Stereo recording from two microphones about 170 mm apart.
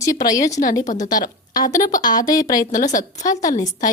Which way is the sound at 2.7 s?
50° left (ahead or behind).